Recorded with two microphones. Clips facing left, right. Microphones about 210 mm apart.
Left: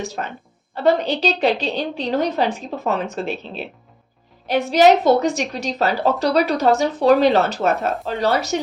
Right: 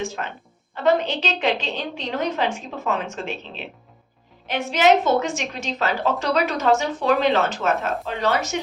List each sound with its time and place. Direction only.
0.0 s a woman's voice: 35° left (ahead or behind)